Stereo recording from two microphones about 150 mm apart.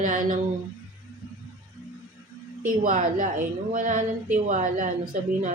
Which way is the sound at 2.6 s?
65° right (ahead or behind).